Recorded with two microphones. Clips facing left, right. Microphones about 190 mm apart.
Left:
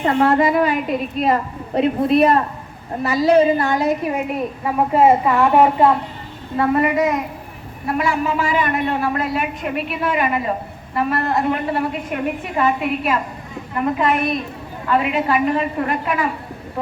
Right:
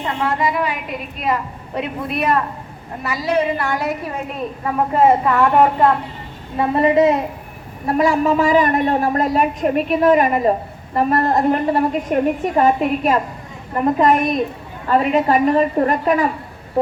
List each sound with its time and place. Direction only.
0.2 s a woman's voice: 55° left (ahead or behind); by 4.2 s 20° left (ahead or behind)
4.6 s a woman's voice: 10° left (ahead or behind)
6.6 s a woman's voice: 25° right (ahead or behind)